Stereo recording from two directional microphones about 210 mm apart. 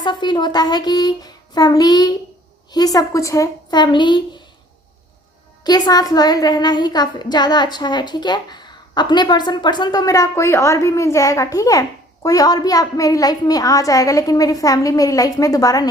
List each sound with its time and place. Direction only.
0.0 s a child's voice: 20° left (ahead or behind)
5.6 s a child's voice: 20° left (ahead or behind)